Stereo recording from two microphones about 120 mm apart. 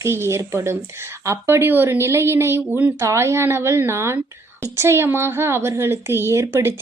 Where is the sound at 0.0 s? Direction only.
20° right (ahead or behind).